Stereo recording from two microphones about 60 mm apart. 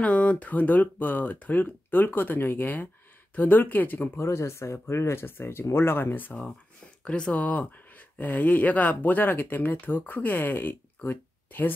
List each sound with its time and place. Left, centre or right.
0.0 s speech: left
4.2 s speech: left
7.1 s speech: centre; by 11.7 s left